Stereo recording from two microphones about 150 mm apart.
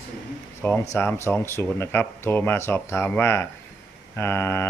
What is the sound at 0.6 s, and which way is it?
Speech, 15° left (ahead or behind).